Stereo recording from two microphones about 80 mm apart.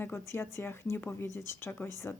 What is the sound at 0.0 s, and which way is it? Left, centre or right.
A woman's voice, left.